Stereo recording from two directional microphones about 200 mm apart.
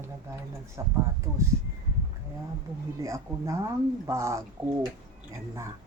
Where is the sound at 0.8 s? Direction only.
15° right (ahead or behind).